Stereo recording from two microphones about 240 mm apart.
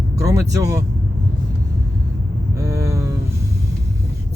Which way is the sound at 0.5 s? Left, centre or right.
Centre.